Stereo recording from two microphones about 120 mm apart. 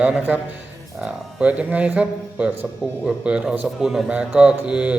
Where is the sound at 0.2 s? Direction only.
15° right (ahead or behind).